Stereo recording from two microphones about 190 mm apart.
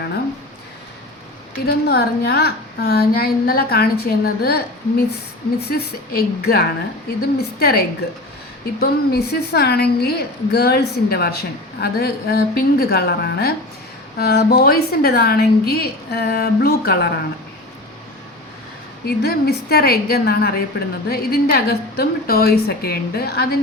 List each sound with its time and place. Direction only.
1.6 s a woman's voice: 55° left (ahead or behind)
19.0 s a woman's voice: 55° left (ahead or behind)